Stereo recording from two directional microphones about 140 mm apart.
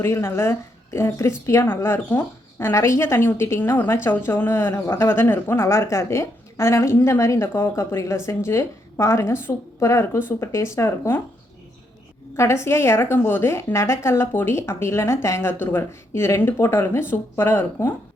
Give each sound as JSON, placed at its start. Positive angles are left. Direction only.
{"t": 0.0, "sound": "a woman's voice", "side_deg": 15}
{"t": 12.4, "sound": "a woman's voice", "side_deg": 20}